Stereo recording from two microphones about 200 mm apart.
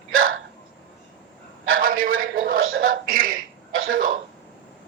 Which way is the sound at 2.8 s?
45° right (ahead or behind).